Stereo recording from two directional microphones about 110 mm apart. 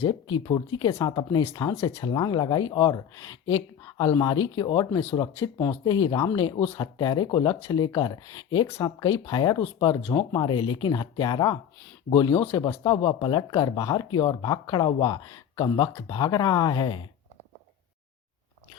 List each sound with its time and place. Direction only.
0.1 s speech: 40° left (ahead or behind)
1.8 s speech: 25° left (ahead or behind)
2.0 s speech: 40° left (ahead or behind)
9.9 s speech: 30° left (ahead or behind)
12.5 s speech: 40° left (ahead or behind)
15.2 s speech: 35° left (ahead or behind)